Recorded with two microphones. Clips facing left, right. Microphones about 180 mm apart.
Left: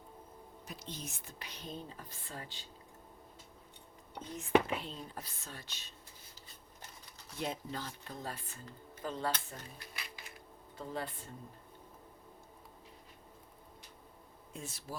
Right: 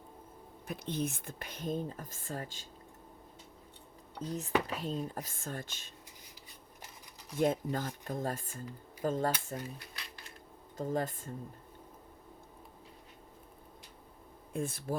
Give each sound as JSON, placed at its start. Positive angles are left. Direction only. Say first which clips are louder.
{"t": 0.7, "sound": "speech", "louder": "right 11 dB", "side_deg": -55}
{"t": 4.2, "sound": "speech", "louder": "left 3 dB", "side_deg": -40}
{"t": 6.8, "sound": "a sound", "louder": "right 1 dB", "side_deg": -15}
{"t": 7.3, "sound": "speech", "louder": "right 9 dB", "side_deg": -50}
{"t": 10.8, "sound": "speech", "louder": "right 7 dB", "side_deg": -45}
{"t": 14.5, "sound": "speech", "louder": "right 10 dB", "side_deg": -55}